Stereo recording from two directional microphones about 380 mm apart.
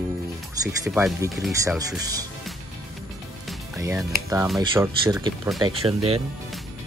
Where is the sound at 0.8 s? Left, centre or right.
Centre.